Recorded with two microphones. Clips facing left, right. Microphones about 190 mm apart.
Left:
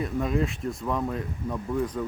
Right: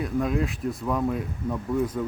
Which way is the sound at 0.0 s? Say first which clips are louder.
Right 1 dB; centre (ahead or behind).